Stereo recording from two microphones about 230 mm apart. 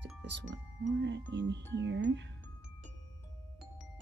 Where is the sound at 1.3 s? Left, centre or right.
Right.